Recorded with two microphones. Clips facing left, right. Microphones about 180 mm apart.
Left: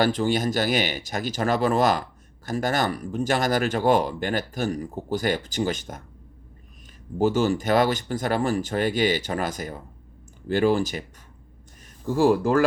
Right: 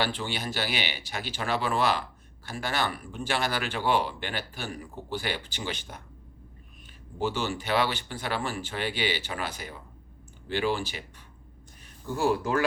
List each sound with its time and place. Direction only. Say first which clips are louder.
0.0 s speech: left 9 dB; 45° left (ahead or behind)
7.2 s speech: left 9 dB; 45° left (ahead or behind)
12.1 s speech: left 7 dB; 40° left (ahead or behind)